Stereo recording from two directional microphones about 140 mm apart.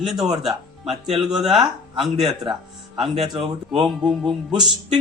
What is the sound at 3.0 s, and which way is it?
Speech, centre (ahead or behind).